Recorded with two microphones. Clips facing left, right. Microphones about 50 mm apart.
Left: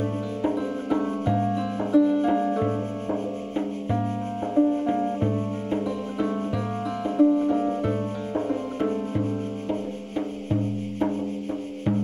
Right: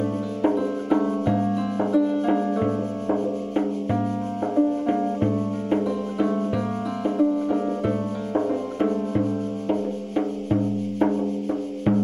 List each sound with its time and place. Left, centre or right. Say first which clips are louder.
0.6 s music: right 3 dB; centre
4.6 s music: even; left
5.9 s music: right 3 dB; centre